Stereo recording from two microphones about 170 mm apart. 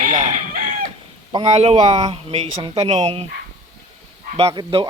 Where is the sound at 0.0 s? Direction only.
50° right (ahead or behind).